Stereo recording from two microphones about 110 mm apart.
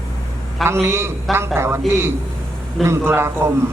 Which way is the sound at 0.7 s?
25° right (ahead or behind).